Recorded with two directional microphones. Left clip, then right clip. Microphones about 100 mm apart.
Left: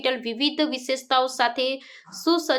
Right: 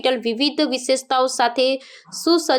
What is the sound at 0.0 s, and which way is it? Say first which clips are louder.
Speech: right 5 dB; 35° right (ahead or behind).